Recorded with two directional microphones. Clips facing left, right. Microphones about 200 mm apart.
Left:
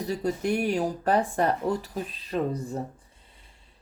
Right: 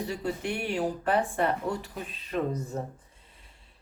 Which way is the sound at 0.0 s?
40° left (ahead or behind).